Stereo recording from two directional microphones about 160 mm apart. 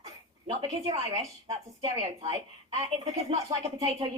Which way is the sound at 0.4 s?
30° right (ahead or behind).